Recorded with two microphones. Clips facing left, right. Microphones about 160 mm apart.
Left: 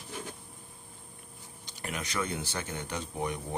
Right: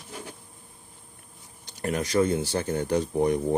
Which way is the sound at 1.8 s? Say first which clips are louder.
Right 11 dB; 40° right (ahead or behind).